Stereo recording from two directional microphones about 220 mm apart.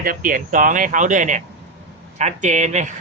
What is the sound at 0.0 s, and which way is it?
Speech, 40° right (ahead or behind).